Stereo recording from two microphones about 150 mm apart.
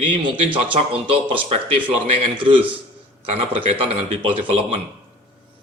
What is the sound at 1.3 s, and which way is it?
Speech, 35° right (ahead or behind).